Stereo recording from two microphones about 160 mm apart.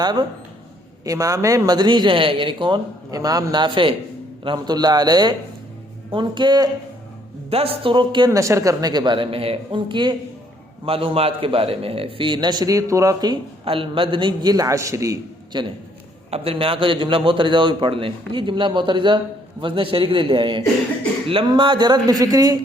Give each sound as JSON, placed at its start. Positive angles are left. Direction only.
{"t": 0.0, "sound": "a man's voice", "side_deg": -25}
{"t": 16.3, "sound": "a man's voice", "side_deg": -35}